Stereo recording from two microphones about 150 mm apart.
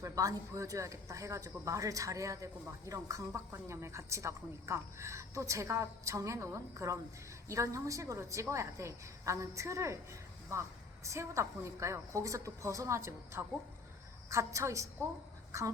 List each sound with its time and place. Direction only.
0.0 s speech: 20° right (ahead or behind)